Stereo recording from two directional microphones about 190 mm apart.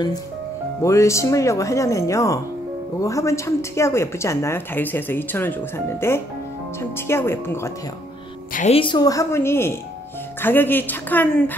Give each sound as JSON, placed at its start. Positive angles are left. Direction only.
{"t": 0.8, "sound": "speech", "side_deg": 15}
{"t": 8.5, "sound": "speech", "side_deg": 30}